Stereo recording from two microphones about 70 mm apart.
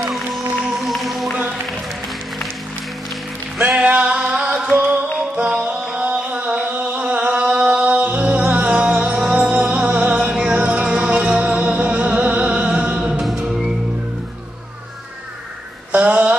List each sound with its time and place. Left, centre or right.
0.7 s music: centre
3.6 s music: centre
13.2 s music: centre
15.9 s a sound: right